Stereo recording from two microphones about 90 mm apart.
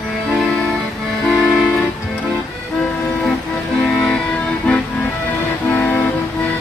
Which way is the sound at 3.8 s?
5° left (ahead or behind).